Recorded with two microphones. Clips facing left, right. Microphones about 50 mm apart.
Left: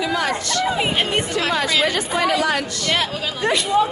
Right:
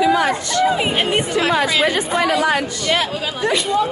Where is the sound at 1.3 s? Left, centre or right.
Centre.